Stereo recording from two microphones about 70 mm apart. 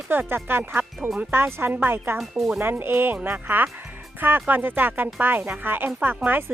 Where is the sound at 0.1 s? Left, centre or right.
Right.